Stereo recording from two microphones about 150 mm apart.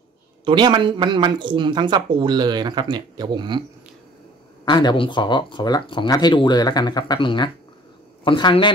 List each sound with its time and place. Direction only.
0.5 s speech: 30° right (ahead or behind)
4.6 s speech: 30° left (ahead or behind)